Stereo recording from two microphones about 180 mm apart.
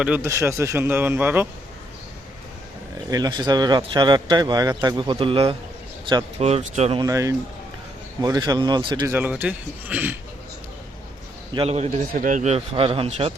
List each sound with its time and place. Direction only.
0.0 s speech: 10° right (ahead or behind)
3.1 s a man's voice: 20° right (ahead or behind)
7.0 s speech: 20° right (ahead or behind)
9.1 s speech: 10° right (ahead or behind)
11.5 s a man's voice: 35° right (ahead or behind)